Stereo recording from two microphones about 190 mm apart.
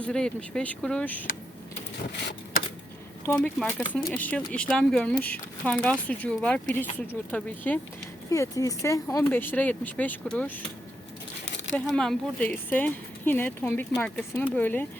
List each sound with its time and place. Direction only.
0.0 s speech: 5° left (ahead or behind)
3.3 s speech: 5° left (ahead or behind)
11.4 s a sound: 70° left (ahead or behind)
11.9 s speech: 5° left (ahead or behind)